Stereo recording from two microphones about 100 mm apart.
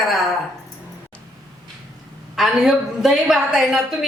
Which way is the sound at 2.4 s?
5° right (ahead or behind).